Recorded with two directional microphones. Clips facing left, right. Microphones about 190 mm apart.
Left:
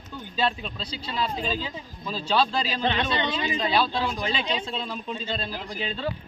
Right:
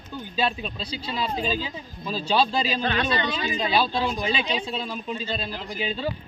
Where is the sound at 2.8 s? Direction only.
20° left (ahead or behind).